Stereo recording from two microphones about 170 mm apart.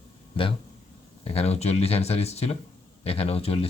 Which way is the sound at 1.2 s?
35° left (ahead or behind).